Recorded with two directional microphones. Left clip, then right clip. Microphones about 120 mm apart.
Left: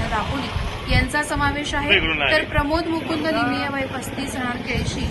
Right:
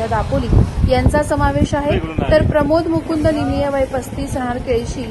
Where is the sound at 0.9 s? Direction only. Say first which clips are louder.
Right 6 dB; 15° left (ahead or behind).